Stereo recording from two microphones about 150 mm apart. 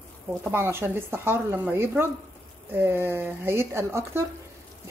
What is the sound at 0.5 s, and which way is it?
Speech, 15° right (ahead or behind).